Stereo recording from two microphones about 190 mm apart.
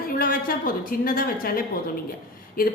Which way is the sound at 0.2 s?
50° left (ahead or behind).